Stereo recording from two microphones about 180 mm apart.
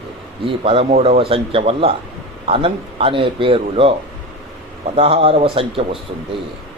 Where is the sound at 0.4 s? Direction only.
30° right (ahead or behind).